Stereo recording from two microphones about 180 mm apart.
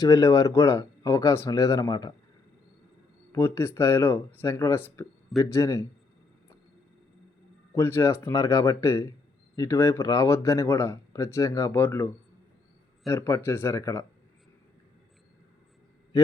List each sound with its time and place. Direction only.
0.0 s speech: 20° left (ahead or behind)
3.3 s speech: 15° left (ahead or behind)
7.8 s speech: 15° left (ahead or behind)